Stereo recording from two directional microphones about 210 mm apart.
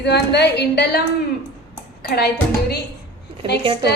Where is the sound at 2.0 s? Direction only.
50° left (ahead or behind).